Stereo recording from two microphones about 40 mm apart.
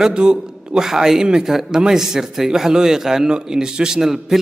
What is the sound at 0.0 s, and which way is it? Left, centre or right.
A man's voice, right.